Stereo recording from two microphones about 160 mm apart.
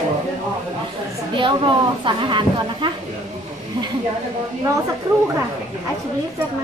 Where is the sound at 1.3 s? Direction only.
30° right (ahead or behind).